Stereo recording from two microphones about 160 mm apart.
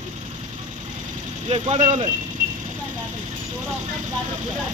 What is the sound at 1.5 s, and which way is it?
Speech, 40° right (ahead or behind).